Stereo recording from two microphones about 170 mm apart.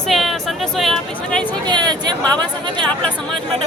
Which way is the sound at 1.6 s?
25° right (ahead or behind).